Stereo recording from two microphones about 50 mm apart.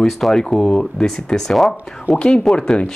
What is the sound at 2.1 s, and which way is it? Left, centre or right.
Speech, left.